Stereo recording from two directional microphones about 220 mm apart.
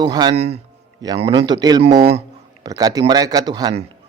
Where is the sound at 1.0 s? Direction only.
15° right (ahead or behind).